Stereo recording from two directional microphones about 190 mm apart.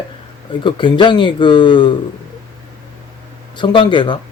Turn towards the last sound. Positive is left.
turn(degrees=25)  # may be behind; listen again after turning